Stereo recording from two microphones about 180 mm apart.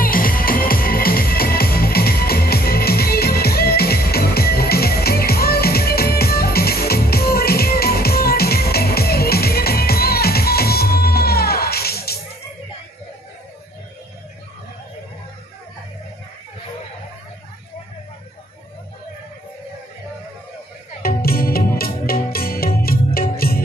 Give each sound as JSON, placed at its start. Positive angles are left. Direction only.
{"t": 0.0, "sound": "music", "side_deg": 50}
{"t": 21.0, "sound": "music", "side_deg": 55}